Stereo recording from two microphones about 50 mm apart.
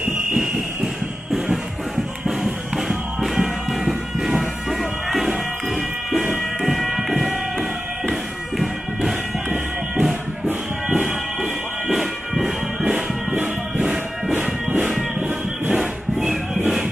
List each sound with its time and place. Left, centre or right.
1.3 s music: centre
11.9 s music: centre
15.7 s a sound: centre